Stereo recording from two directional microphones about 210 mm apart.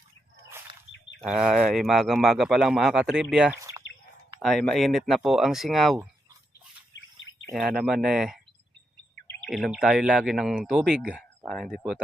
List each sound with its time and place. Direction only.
1.2 s speech: centre (ahead or behind)
6.9 s bird: 65° left (ahead or behind)
7.5 s speech: 5° right (ahead or behind)
9.2 s bird vocalization: 10° left (ahead or behind)
9.5 s speech: centre (ahead or behind)